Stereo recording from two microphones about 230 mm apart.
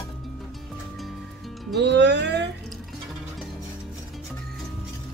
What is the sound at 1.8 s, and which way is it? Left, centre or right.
Music, right.